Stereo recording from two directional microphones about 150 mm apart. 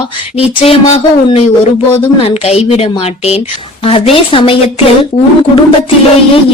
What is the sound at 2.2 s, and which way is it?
A woman's voice, 45° left (ahead or behind).